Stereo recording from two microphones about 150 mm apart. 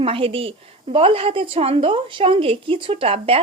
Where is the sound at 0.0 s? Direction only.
40° right (ahead or behind).